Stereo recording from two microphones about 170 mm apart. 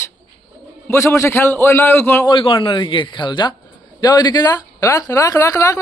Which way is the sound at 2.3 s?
30° left (ahead or behind).